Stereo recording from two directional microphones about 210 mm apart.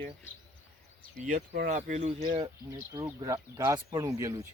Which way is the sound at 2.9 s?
15° right (ahead or behind).